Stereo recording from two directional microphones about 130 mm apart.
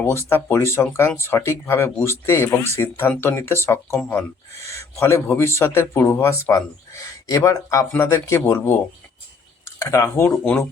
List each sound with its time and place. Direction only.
0.0 s speech: 20° left (ahead or behind)